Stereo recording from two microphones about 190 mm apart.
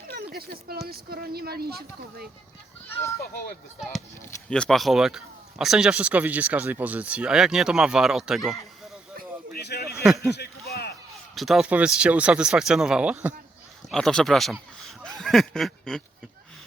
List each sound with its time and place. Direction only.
0.3 s speech: 55° right (ahead or behind)
2.8 s a child's voice: 15° left (ahead or behind)
4.4 s speech: 5° left (ahead or behind)
9.5 s speech: 60° left (ahead or behind)
10.1 s speech: centre (ahead or behind)
10.3 s a sound: 55° left (ahead or behind)
11.3 s speech: centre (ahead or behind)
14.8 s a sound: 5° left (ahead or behind)